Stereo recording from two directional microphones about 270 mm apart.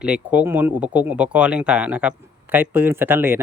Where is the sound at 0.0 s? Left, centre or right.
Centre.